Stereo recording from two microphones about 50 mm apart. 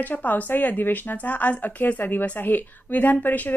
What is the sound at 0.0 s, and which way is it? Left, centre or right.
A woman's voice, left.